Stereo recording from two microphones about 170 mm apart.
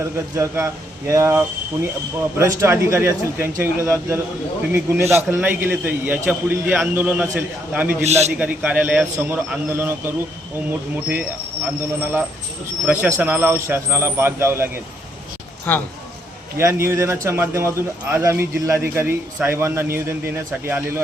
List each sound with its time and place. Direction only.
0.0 s a man's voice: 15° right (ahead or behind)
8.0 s a man's voice: 40° right (ahead or behind)
8.3 s a man's voice: 5° right (ahead or behind)
15.7 s speech: 10° left (ahead or behind)
16.6 s a man's voice: 15° right (ahead or behind)